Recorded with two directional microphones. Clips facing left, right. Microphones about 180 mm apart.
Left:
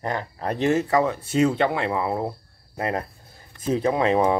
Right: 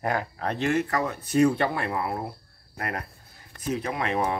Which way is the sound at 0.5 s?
25° left (ahead or behind).